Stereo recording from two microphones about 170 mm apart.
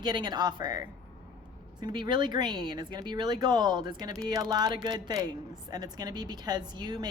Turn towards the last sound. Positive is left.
turn(degrees=-25)  # may be behind; listen again after turning